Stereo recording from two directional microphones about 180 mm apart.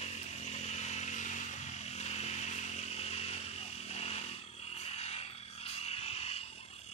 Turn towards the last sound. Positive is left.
turn(degrees=35)  # may be behind; listen again after turning